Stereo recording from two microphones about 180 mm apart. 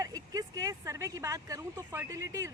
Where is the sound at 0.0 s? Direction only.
20° right (ahead or behind).